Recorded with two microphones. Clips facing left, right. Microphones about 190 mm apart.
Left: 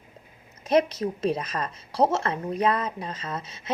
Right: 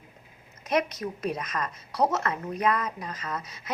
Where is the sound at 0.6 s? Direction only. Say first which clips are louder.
Left 5 dB; 30° left (ahead or behind).